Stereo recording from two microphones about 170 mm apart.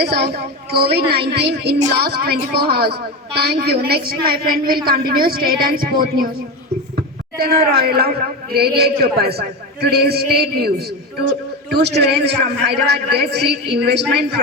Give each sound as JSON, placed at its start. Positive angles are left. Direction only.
{"t": 0.0, "sound": "a man's voice", "side_deg": -70}
{"t": 7.3, "sound": "a woman's voice", "side_deg": -65}